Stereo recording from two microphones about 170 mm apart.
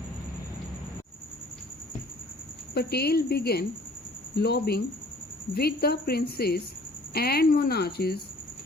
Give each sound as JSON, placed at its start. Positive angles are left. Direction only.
{"t": 2.7, "sound": "a woman's voice", "side_deg": 70}